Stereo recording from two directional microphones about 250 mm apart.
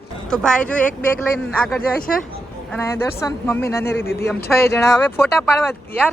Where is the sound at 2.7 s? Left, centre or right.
Centre.